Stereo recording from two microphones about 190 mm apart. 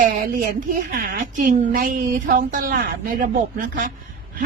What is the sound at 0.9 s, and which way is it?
A woman's voice, 45° right (ahead or behind).